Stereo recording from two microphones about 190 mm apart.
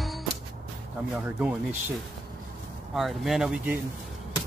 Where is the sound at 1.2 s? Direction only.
10° right (ahead or behind).